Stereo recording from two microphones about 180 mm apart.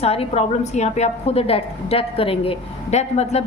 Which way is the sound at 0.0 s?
35° left (ahead or behind).